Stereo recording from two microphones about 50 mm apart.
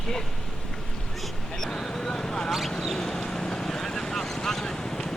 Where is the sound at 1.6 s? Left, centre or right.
Centre.